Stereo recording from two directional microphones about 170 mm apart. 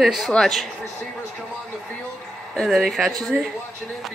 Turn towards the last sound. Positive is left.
turn(degrees=0)  # may be behind; listen again after turning